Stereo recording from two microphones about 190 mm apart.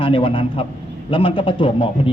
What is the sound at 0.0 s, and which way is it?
Speech, 30° left (ahead or behind).